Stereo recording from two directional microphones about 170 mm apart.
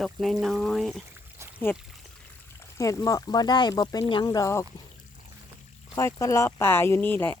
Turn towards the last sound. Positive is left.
turn(degrees=10)  # may be behind; listen again after turning